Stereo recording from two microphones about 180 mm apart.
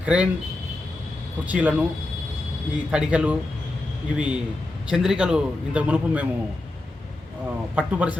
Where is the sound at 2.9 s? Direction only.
5° right (ahead or behind).